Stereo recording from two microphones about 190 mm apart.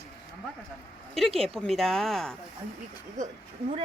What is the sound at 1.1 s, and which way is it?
Speech, centre (ahead or behind).